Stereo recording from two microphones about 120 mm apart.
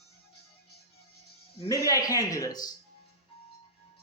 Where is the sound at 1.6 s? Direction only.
30° left (ahead or behind).